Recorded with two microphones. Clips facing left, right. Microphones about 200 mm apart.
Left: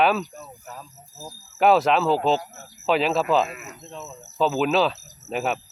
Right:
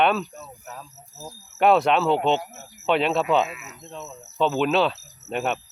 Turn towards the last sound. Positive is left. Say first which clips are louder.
# even
turn(degrees=0)  # may be behind; listen again after turning